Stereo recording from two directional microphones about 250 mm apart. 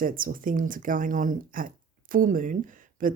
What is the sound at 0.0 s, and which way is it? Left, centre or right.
A woman's voice, right.